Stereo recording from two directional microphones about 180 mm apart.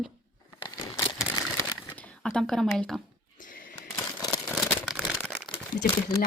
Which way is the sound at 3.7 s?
20° left (ahead or behind).